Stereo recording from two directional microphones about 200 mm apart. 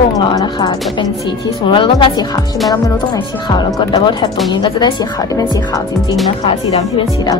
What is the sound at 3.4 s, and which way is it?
Speech, 20° left (ahead or behind).